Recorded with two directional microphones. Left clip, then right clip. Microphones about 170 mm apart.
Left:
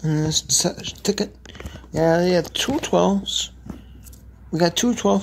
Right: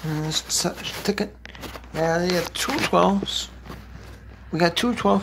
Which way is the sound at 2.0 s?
30° left (ahead or behind).